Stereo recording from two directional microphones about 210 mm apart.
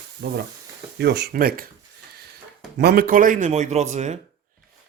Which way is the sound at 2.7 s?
45° right (ahead or behind).